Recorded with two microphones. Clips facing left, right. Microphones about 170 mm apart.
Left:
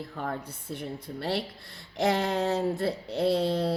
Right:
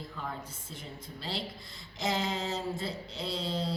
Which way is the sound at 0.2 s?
60° left (ahead or behind).